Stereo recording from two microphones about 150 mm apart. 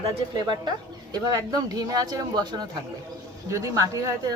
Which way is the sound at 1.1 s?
25° right (ahead or behind).